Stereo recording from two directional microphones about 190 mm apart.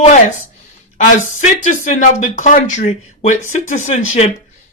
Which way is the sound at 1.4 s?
40° left (ahead or behind).